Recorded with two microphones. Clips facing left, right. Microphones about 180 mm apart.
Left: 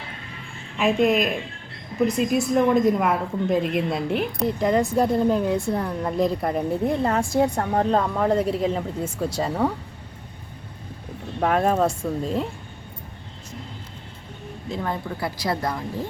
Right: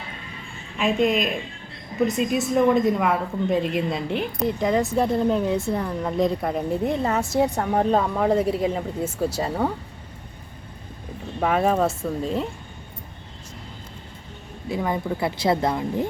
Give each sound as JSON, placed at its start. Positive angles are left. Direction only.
{"t": 0.8, "sound": "a woman's voice", "side_deg": 0}
{"t": 11.3, "sound": "a woman's voice", "side_deg": 0}
{"t": 14.7, "sound": "speech", "side_deg": -10}
{"t": 15.2, "sound": "speech", "side_deg": -25}